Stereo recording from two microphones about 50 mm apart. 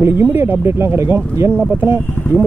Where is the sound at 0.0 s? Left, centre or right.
Right.